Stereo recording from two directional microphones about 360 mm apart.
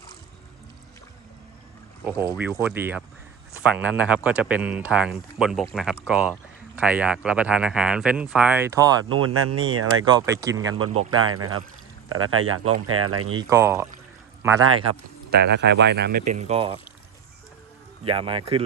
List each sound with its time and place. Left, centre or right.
2.0 s speech: centre
9.1 s speech: right
10.2 s speech: centre
10.8 s speech: right
13.5 s speech: centre
15.4 s speech: right
18.0 s speech: centre